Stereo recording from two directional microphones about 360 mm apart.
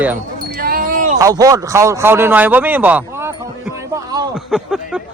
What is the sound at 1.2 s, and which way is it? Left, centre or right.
Speech, centre.